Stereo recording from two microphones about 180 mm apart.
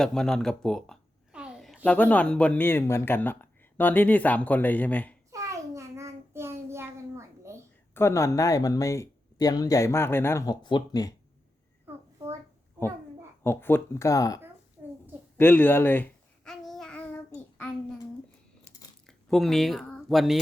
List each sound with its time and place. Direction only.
0.0 s a woman's voice: 5° left (ahead or behind)
5.3 s child singing: 15° right (ahead or behind)
7.9 s speech: 15° left (ahead or behind)
13.4 s speech: 10° left (ahead or behind)
15.4 s babbling: 10° left (ahead or behind)
19.0 s speech: centre (ahead or behind)